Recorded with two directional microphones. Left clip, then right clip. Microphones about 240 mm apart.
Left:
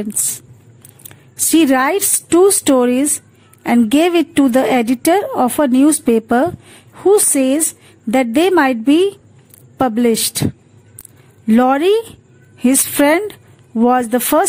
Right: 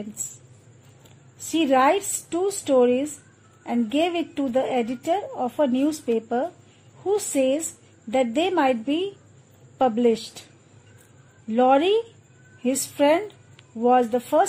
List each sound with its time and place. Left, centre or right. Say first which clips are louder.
1.5 s a woman's voice: left 6 dB; left
11.4 s a woman's voice: left 6 dB; left